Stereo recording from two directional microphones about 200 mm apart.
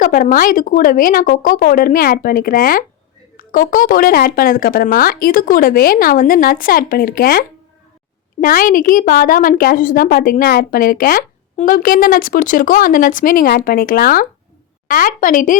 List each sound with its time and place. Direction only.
0.0 s a woman's voice: 40° left (ahead or behind)